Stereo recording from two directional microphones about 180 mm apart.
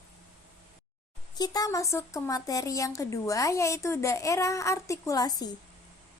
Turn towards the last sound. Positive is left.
turn(degrees=20)  # may be behind; listen again after turning